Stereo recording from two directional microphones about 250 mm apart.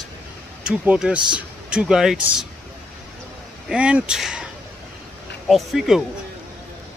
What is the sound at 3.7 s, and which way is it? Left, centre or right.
Speech, centre.